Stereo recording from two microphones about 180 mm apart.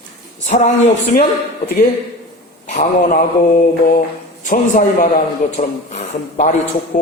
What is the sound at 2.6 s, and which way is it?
A man's voice, 40° left (ahead or behind).